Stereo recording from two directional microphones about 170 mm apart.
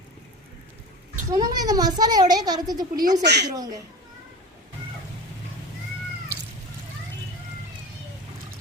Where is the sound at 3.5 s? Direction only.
20° right (ahead or behind).